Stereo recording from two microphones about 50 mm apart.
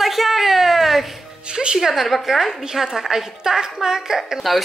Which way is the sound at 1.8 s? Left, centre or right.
Centre.